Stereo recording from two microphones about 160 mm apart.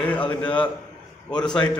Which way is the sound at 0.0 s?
10° left (ahead or behind).